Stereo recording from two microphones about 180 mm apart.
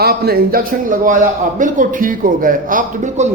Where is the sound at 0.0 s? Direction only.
60° right (ahead or behind).